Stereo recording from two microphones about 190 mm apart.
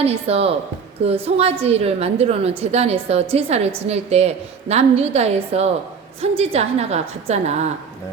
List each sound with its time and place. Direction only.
0.0 s a woman's voice: 30° right (ahead or behind)